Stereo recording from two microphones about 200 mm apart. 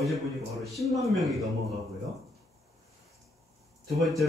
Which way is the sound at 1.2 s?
Centre (ahead or behind).